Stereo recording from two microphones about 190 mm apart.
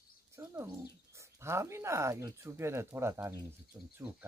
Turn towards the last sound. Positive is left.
turn(degrees=-10)  # may be behind; listen again after turning